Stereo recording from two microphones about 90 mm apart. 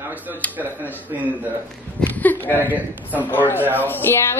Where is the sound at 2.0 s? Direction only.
20° left (ahead or behind).